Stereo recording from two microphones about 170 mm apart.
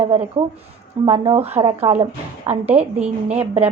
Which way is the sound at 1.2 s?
35° right (ahead or behind).